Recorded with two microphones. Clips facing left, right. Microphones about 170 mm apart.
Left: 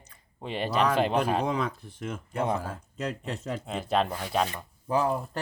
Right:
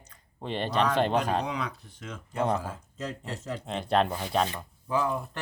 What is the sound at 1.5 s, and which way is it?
Speech, 50° left (ahead or behind).